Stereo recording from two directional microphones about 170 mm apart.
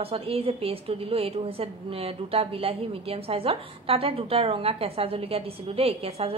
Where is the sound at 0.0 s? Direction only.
35° right (ahead or behind).